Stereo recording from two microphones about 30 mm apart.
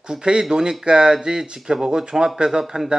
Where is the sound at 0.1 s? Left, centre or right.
Right.